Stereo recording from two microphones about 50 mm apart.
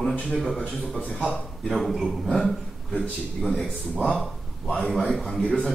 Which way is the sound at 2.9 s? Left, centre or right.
Left.